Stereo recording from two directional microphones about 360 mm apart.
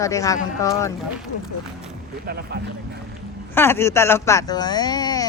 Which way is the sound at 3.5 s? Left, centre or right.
Centre.